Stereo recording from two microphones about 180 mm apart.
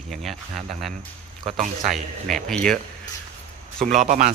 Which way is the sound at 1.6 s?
45° right (ahead or behind).